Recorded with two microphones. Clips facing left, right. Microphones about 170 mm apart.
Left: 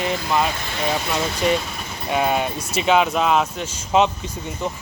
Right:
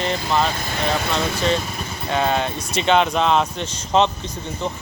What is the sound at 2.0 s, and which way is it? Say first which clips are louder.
Speech: even; 10° left (ahead or behind).